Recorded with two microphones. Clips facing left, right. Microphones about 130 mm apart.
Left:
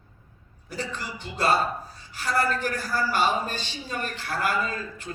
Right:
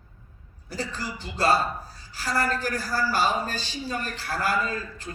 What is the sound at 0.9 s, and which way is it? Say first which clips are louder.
A woman's voice: right 1 dB; 35° right (ahead or behind).